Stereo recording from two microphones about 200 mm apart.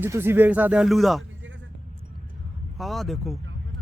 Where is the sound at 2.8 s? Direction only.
Centre (ahead or behind).